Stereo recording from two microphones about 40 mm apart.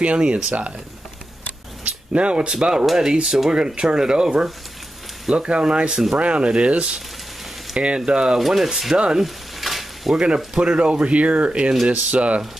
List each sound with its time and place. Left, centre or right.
0.0 s speech: right
2.1 s speech: right
8.4 s speech: centre
8.9 s speech: right
9.2 s frying: centre
10.1 s speech: right